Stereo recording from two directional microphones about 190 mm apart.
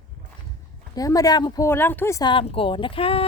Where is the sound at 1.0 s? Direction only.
20° left (ahead or behind).